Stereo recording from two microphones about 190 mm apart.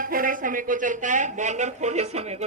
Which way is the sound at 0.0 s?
50° right (ahead or behind).